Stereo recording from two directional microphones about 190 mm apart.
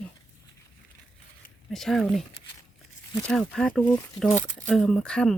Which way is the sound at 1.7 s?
Centre (ahead or behind).